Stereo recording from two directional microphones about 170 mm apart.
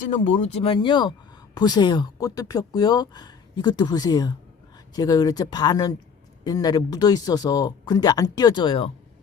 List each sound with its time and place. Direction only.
0.0 s speech: 45° left (ahead or behind)